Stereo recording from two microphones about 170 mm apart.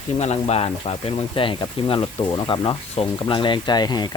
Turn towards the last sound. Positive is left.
turn(degrees=25)  # may be behind; listen again after turning